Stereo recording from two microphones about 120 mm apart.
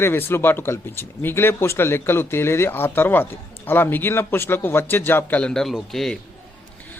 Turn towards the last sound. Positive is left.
turn(degrees=0)  # may be behind; listen again after turning